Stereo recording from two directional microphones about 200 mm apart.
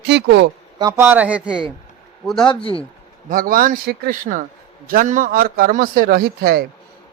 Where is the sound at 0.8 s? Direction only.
15° right (ahead or behind).